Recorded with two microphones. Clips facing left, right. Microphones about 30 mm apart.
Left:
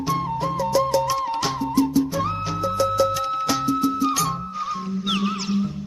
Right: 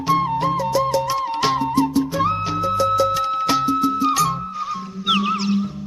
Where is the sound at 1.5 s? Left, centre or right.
Right.